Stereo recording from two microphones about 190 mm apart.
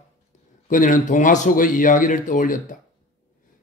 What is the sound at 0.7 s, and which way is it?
A man's voice, 45° left (ahead or behind).